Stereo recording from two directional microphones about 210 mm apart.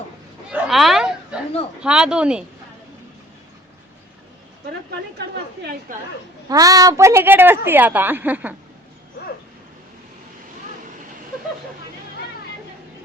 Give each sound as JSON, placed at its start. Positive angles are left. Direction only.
{"t": 0.5, "sound": "a sound", "side_deg": 0}
{"t": 1.8, "sound": "speech", "side_deg": -5}
{"t": 5.9, "sound": "a woman's voice", "side_deg": -40}
{"t": 6.5, "sound": "a woman's voice", "side_deg": -15}